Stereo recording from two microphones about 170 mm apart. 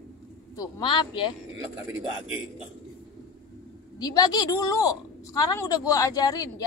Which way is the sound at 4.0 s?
20° left (ahead or behind).